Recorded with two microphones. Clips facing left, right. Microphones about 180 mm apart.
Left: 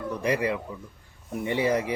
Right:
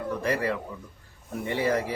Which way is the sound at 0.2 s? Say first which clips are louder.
Left 3 dB; 15° left (ahead or behind).